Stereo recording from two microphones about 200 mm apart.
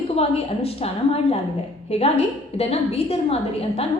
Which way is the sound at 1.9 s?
30° left (ahead or behind).